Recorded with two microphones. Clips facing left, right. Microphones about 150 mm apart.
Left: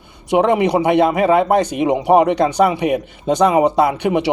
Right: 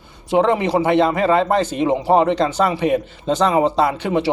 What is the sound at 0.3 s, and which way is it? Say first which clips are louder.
A man's voice: left 2 dB; 15° left (ahead or behind).